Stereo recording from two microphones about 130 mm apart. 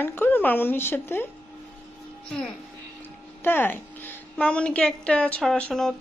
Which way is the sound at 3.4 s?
15° left (ahead or behind).